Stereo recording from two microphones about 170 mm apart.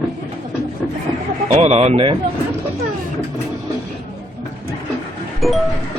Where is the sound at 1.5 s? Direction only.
40° right (ahead or behind).